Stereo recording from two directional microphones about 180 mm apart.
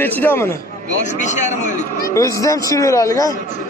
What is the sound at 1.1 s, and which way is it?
A man's voice, 40° left (ahead or behind).